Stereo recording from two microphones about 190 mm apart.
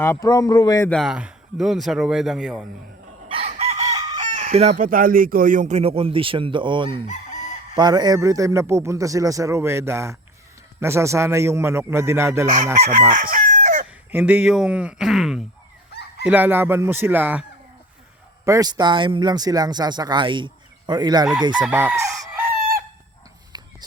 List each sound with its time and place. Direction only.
0.0 s speech: 15° left (ahead or behind)
0.9 s speech: centre (ahead or behind)
3.2 s chicken: 30° right (ahead or behind)
4.7 s speech: 45° right (ahead or behind); by 7.1 s 30° right (ahead or behind)
7.1 s chicken: 40° left (ahead or behind)
7.8 s a man's voice: 20° right (ahead or behind)
12.8 s chicken: 45° right (ahead or behind)
13.8 s speech: 10° right (ahead or behind)
15.9 s chicken: 60° left (ahead or behind)
16.2 s a man's voice: 10° right (ahead or behind)
18.4 s speech: 20° right (ahead or behind)
21.6 s a man's voice: 5° right (ahead or behind)
23.5 s a sound: 20° right (ahead or behind)